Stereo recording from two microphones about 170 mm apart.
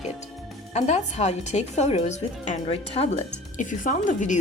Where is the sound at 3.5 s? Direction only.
50° left (ahead or behind).